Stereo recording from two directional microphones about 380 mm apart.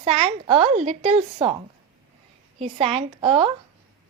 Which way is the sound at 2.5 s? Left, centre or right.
Centre.